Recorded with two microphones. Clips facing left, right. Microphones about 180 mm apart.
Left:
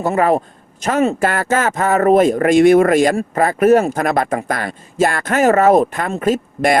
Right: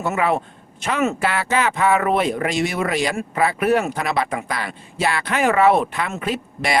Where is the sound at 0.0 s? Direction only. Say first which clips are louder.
Left 5 dB; 40° left (ahead or behind).